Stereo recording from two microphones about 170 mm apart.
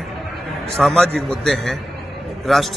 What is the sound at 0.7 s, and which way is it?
A man's voice, centre (ahead or behind).